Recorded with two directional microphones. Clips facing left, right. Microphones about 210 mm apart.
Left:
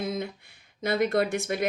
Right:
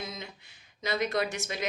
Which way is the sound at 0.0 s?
55° left (ahead or behind).